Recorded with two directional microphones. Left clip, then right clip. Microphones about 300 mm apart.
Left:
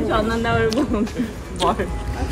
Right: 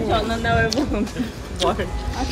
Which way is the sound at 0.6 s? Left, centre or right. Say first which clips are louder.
Left 2 dB; centre.